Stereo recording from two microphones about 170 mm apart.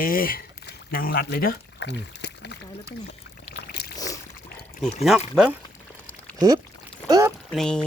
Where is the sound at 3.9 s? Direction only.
20° left (ahead or behind).